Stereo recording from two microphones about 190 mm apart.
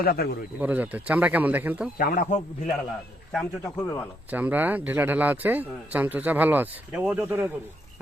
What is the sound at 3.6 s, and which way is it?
Speech, 15° left (ahead or behind).